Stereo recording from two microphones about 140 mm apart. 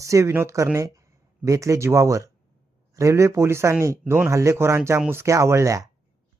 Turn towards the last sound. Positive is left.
turn(degrees=-20)  # may be behind; listen again after turning